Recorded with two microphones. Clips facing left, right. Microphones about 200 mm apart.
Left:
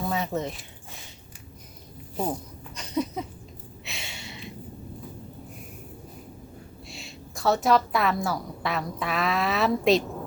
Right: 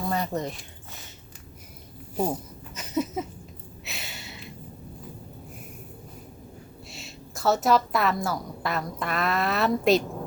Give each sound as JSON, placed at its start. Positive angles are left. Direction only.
{"t": 0.1, "sound": "speech", "side_deg": 0}
{"t": 2.1, "sound": "a sound", "side_deg": -10}
{"t": 6.9, "sound": "a woman's voice", "side_deg": 0}